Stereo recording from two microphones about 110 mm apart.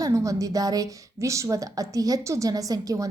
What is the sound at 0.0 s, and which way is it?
A woman's voice, 30° right (ahead or behind).